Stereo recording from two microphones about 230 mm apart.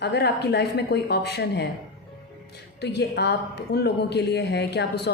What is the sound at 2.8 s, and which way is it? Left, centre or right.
Speech, left.